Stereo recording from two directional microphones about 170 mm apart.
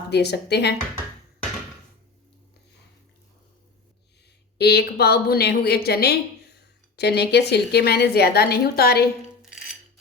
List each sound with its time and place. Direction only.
0.1 s a woman's voice: 75° left (ahead or behind)
4.5 s a woman's voice: 75° left (ahead or behind)
9.4 s music: centre (ahead or behind)